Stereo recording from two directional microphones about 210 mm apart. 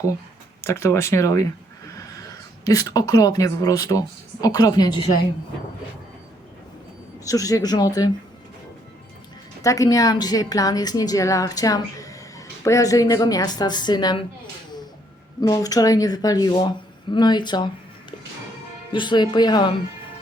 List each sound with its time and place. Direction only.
0.6 s a woman's voice: 15° left (ahead or behind)
2.6 s a woman's voice: 15° left (ahead or behind)
7.3 s a woman's voice: 15° left (ahead or behind)
9.6 s a woman's voice: 15° left (ahead or behind)
15.4 s speech: 15° left (ahead or behind)
18.9 s speech: 20° left (ahead or behind)